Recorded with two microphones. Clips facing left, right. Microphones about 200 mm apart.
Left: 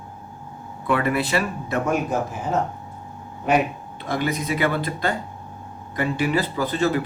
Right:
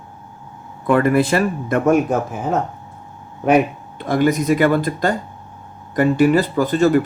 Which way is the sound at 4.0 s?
50° right (ahead or behind).